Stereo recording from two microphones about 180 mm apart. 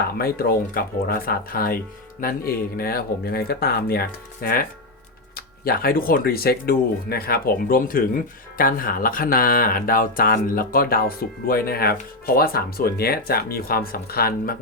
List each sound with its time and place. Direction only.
0.2 s speech: 55° left (ahead or behind)
5.6 s speech: 55° left (ahead or behind)